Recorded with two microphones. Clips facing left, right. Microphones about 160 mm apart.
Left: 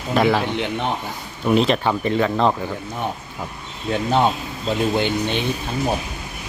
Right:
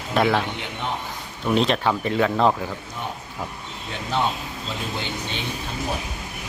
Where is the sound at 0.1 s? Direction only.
Centre (ahead or behind).